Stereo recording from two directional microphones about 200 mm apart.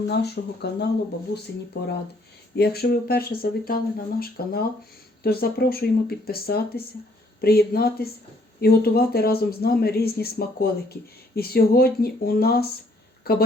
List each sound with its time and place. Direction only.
0.1 s speech: 55° left (ahead or behind)